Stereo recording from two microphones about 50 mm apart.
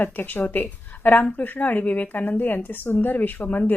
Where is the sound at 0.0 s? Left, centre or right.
Left.